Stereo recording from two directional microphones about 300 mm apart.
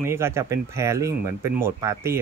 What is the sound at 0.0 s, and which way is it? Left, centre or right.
Speech, centre.